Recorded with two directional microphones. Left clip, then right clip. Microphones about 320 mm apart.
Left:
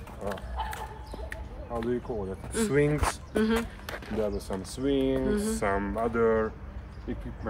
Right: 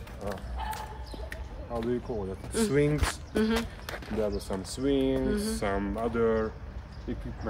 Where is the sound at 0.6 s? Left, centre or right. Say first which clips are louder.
Left 1 dB; centre.